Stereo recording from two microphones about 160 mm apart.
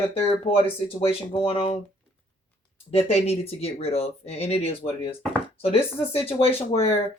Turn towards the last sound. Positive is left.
turn(degrees=40)  # may be behind; listen again after turning